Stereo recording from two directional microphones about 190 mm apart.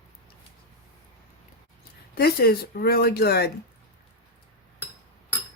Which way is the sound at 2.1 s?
55° left (ahead or behind).